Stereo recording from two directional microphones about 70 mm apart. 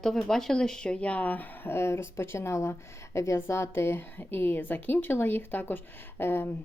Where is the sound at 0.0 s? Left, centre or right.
Centre; by 6.5 s left.